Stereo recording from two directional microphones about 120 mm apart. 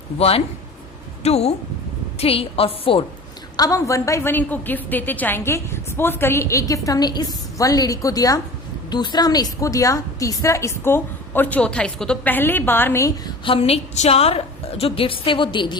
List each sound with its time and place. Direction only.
0.2 s a woman's voice: 55° left (ahead or behind)
3.6 s a woman's voice: 25° left (ahead or behind)
13.4 s a woman's voice: 50° left (ahead or behind)